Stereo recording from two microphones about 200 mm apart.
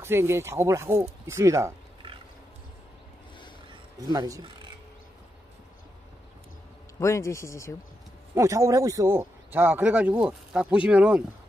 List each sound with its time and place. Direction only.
0.0 s speech: 10° right (ahead or behind)
4.0 s speech: 20° right (ahead or behind)
7.0 s speech: 15° left (ahead or behind)
8.4 s speech: 15° right (ahead or behind)